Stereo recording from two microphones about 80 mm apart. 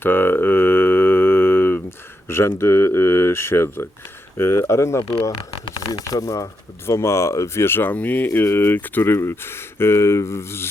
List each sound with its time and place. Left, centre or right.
0.0 s a sound: left
2.2 s speech: left
5.9 s speech: left
6.8 s speech: left